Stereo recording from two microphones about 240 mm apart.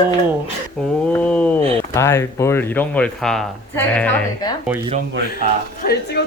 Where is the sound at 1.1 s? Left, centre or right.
Centre.